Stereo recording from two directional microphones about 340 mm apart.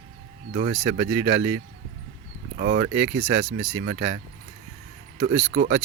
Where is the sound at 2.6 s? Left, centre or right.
Right.